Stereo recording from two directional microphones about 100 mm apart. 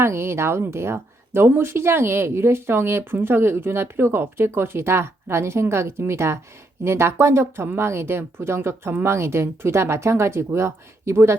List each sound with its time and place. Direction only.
0.0 s speech: 25° right (ahead or behind)